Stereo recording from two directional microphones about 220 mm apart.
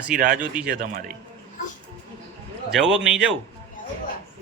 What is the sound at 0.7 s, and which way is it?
Speech, 40° right (ahead or behind).